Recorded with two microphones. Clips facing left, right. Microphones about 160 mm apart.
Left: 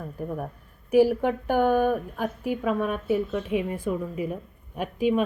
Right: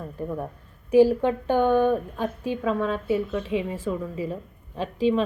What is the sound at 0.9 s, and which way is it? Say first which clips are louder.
A woman's voice: right 2 dB; 10° left (ahead or behind).